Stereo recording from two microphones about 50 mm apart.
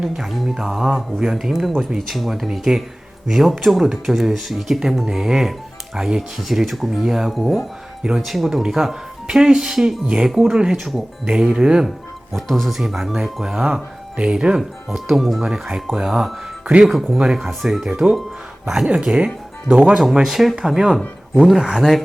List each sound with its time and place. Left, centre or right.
0.2 s speech: centre
12.3 s speech: centre
12.7 s speech: centre
18.9 s speech: centre
20.1 s speech: centre